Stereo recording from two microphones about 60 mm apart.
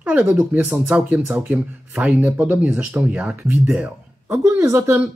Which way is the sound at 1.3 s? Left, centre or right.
Right.